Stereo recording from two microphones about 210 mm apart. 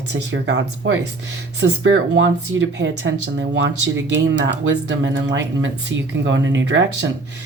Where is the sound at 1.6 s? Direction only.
65° right (ahead or behind).